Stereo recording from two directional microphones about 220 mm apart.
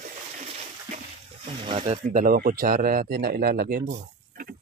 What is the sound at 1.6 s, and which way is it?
Speech, 25° right (ahead or behind).